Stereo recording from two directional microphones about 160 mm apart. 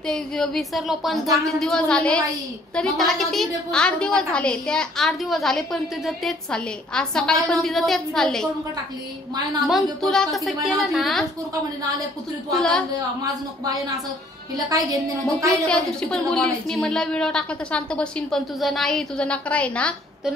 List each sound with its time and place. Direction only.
0.0 s a woman's voice: 5° left (ahead or behind)
9.7 s a woman's voice: centre (ahead or behind)
12.5 s a woman's voice: 5° left (ahead or behind)
13.2 s speech: 20° right (ahead or behind)
15.5 s a woman's voice: 5° left (ahead or behind)